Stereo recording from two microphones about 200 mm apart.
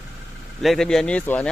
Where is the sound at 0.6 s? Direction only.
Centre (ahead or behind).